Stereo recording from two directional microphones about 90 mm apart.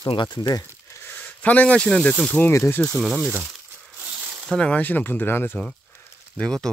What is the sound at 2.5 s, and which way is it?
Speech, 30° left (ahead or behind).